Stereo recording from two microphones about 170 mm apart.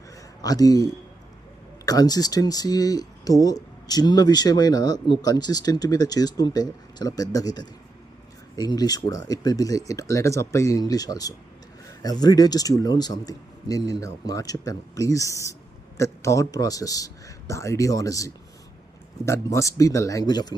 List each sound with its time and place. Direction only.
0.4 s speech: 20° left (ahead or behind)